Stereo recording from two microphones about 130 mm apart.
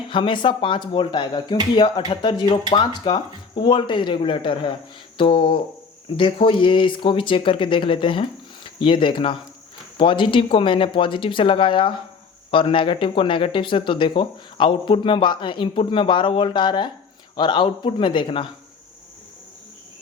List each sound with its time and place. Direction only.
0.1 s speech: 40° left (ahead or behind)
5.1 s a sound: 45° left (ahead or behind)
6.1 s speech: 45° left (ahead or behind)